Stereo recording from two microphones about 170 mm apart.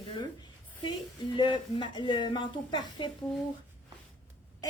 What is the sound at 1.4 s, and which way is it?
A woman's voice, 30° left (ahead or behind).